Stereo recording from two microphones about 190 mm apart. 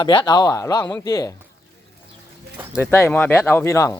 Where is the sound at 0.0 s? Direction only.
25° left (ahead or behind).